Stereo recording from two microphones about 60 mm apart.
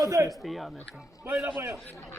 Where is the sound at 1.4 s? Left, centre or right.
Right.